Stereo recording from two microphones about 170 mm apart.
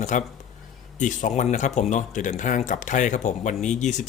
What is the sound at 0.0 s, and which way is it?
Speech, 45° left (ahead or behind).